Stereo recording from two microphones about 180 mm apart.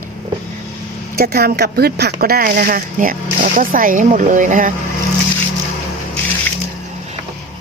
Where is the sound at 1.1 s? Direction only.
60° right (ahead or behind).